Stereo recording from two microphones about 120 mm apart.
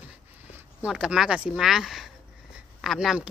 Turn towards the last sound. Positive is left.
turn(degrees=-5)  # may be behind; listen again after turning